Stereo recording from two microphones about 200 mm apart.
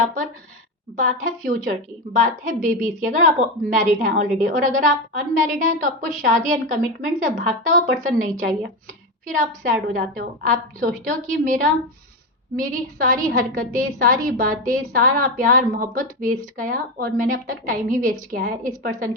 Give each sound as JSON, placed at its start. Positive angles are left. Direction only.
{"t": 0.0, "sound": "a woman's voice", "side_deg": -45}